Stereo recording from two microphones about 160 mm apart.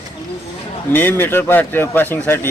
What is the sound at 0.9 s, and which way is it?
Speech, 10° left (ahead or behind).